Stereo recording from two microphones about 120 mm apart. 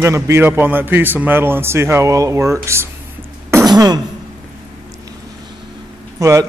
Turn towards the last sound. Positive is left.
turn(degrees=-25)  # may be behind; listen again after turning